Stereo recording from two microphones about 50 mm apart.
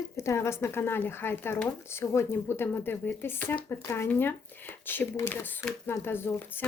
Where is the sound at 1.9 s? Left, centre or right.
Left.